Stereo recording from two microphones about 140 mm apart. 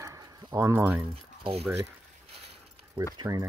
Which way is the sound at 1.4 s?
45° right (ahead or behind).